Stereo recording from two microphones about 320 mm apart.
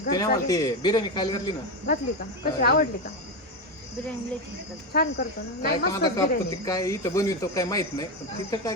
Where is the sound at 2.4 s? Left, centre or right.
Left.